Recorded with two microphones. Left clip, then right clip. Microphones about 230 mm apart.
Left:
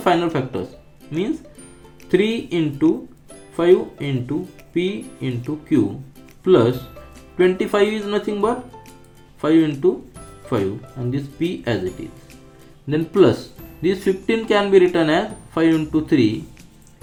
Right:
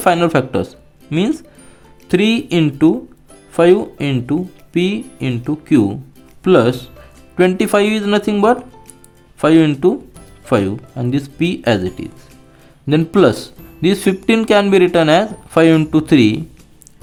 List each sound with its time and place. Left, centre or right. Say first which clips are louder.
0.0 s speech: right 5 dB; right
5.5 s speech: right 5 dB; right